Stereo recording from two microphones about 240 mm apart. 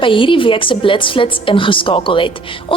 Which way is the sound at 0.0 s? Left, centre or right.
Left.